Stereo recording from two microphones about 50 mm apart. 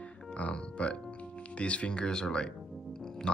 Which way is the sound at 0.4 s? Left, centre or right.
Left.